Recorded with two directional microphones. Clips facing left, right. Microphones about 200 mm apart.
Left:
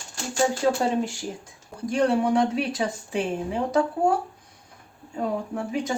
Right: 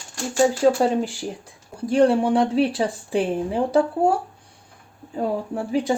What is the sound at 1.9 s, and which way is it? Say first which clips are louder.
Speech: right 4 dB; 30° right (ahead or behind).